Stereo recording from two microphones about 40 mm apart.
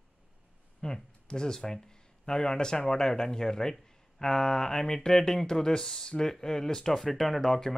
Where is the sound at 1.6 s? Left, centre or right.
Centre.